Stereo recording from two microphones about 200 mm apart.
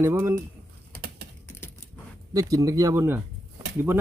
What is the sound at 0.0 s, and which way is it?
Speech, 15° right (ahead or behind).